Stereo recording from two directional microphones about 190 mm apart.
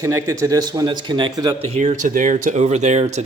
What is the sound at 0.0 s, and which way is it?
Speech, 15° right (ahead or behind).